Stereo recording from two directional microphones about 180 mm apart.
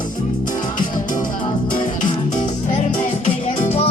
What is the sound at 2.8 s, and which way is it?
Music, 45° left (ahead or behind).